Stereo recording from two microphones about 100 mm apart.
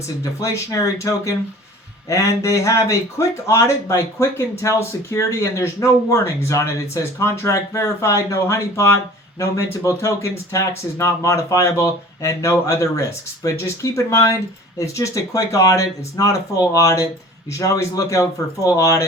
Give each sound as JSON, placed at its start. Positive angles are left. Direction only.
{"t": 0.3, "sound": "a man's voice", "side_deg": 35}